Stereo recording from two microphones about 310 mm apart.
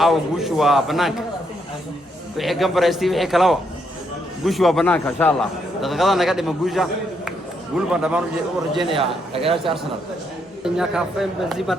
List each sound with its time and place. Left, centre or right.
0.0 s a man's voice: centre
2.4 s a man's voice: centre
7.9 s a man's voice: centre
8.8 s a man's voice: centre
10.8 s a man's voice: centre